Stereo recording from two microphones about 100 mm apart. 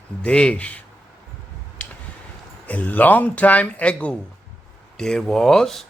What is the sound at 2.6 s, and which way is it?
A man's voice, 15° left (ahead or behind).